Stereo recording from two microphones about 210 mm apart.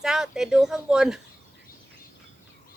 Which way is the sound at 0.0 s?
Centre (ahead or behind).